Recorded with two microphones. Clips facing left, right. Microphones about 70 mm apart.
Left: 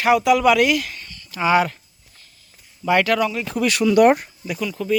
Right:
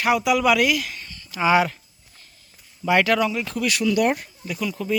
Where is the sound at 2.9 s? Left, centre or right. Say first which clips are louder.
Left 1 dB; centre.